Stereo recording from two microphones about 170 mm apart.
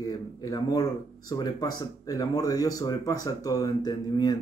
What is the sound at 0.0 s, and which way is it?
Speech, 20° left (ahead or behind).